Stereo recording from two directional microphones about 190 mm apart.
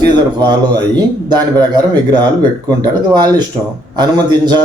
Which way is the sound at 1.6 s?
20° right (ahead or behind).